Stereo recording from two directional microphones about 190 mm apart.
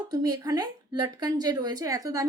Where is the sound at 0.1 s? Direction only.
20° right (ahead or behind).